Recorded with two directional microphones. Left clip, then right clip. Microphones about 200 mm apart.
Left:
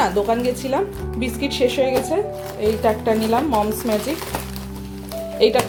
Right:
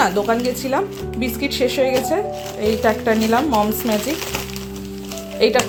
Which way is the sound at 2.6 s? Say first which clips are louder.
Right 1 dB; centre (ahead or behind).